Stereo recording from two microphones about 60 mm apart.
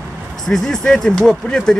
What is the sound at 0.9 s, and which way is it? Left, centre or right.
Speech, centre.